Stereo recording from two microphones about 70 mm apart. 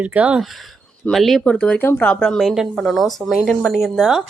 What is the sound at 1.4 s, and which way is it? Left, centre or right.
Speech, centre.